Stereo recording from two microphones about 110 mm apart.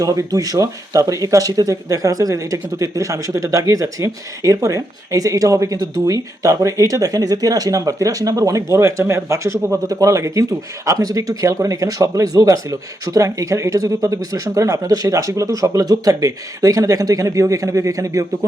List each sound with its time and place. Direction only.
0.0 s speech: 30° right (ahead or behind)